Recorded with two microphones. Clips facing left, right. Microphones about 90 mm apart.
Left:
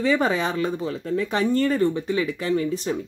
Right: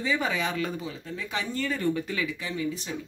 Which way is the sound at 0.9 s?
50° left (ahead or behind).